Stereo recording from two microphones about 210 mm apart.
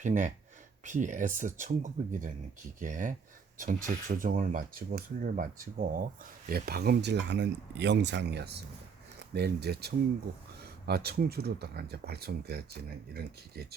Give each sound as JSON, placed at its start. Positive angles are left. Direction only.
{"t": 0.0, "sound": "speech", "side_deg": -35}